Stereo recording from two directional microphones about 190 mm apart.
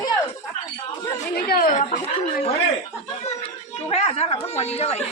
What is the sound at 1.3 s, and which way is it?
Chatter, 50° left (ahead or behind).